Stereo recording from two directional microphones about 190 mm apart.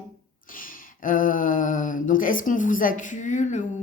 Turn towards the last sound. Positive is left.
turn(degrees=40)  # may be behind; listen again after turning